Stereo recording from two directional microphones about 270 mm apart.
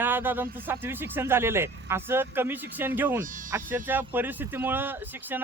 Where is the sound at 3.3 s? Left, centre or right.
Right.